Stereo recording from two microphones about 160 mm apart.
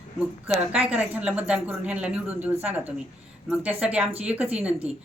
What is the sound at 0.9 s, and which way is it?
A woman's voice, 10° right (ahead or behind).